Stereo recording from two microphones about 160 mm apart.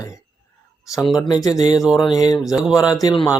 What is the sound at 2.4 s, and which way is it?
Speech, centre (ahead or behind).